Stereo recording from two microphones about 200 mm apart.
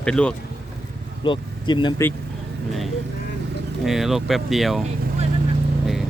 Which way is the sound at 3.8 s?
Centre (ahead or behind).